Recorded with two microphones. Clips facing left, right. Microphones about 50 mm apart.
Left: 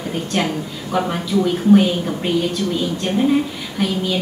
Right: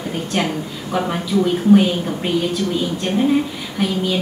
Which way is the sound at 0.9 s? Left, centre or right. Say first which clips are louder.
Even; centre.